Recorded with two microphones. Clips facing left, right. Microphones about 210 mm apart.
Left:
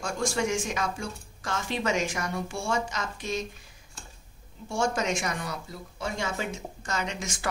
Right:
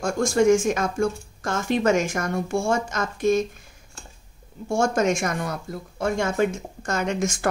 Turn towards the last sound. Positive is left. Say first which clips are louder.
# right 9 dB
turn(degrees=-50)  # may be behind; listen again after turning